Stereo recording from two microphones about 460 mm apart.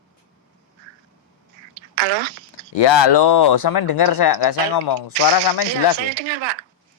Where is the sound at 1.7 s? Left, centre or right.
Right.